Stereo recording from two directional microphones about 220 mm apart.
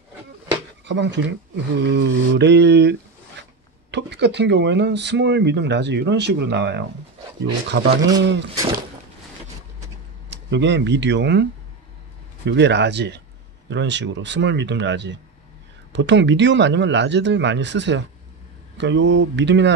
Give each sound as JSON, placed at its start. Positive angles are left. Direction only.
{"t": 0.8, "sound": "speech", "side_deg": -55}
{"t": 10.3, "sound": "speech", "side_deg": -55}
{"t": 12.4, "sound": "speech", "side_deg": -50}